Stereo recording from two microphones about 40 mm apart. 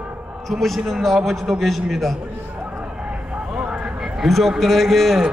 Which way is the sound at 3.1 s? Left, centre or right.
Right.